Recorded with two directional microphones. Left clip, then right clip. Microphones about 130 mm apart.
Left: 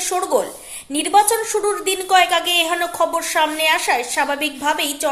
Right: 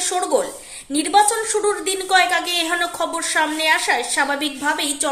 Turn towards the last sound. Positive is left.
turn(degrees=20)  # may be behind; listen again after turning